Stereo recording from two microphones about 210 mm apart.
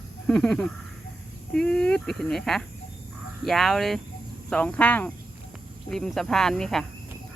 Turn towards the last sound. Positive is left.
turn(degrees=0)  # may be behind; listen again after turning